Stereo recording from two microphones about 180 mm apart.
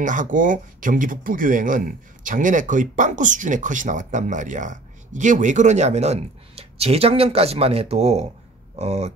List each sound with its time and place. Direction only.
0.0 s speech: 45° right (ahead or behind)